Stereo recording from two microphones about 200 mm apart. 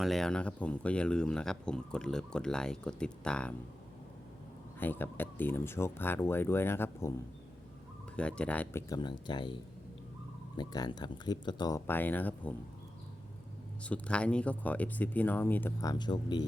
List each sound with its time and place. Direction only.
0.0 s speech: centre (ahead or behind)
4.8 s speech: 10° left (ahead or behind)
8.1 s speech: 5° left (ahead or behind)
9.0 s speech: 20° left (ahead or behind)
10.6 s speech: 20° left (ahead or behind)
13.8 s speech: 5° left (ahead or behind); by 16.5 s 20° left (ahead or behind)